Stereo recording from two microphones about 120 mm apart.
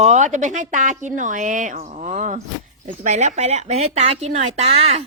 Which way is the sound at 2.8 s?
75° right (ahead or behind).